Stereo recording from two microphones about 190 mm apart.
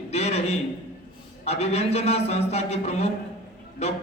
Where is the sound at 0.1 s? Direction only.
35° left (ahead or behind).